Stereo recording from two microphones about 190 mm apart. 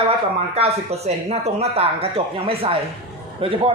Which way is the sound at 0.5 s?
35° right (ahead or behind).